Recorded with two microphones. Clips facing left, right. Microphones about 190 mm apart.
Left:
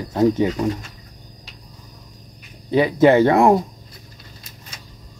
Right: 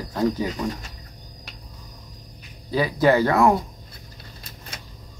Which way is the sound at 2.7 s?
25° left (ahead or behind).